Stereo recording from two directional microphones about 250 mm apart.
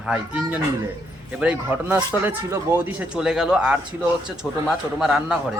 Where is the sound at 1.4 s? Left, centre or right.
Centre.